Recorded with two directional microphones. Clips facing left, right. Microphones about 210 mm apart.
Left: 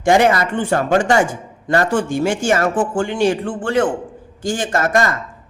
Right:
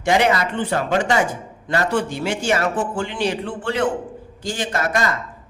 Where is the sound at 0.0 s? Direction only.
45° left (ahead or behind).